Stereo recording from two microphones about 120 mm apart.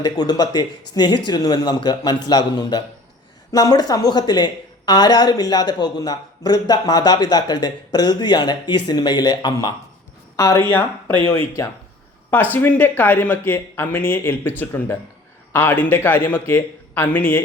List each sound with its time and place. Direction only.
0.0 s a woman's voice: 35° left (ahead or behind); by 17.4 s 15° left (ahead or behind)